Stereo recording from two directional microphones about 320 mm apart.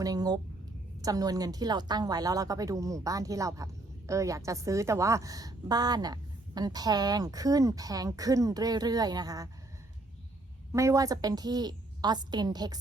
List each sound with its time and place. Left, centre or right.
0.0 s a woman's voice: centre
10.7 s a woman's voice: centre